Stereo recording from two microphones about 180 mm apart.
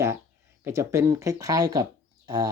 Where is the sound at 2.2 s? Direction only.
25° right (ahead or behind).